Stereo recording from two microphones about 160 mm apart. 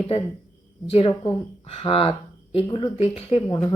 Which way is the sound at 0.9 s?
40° left (ahead or behind).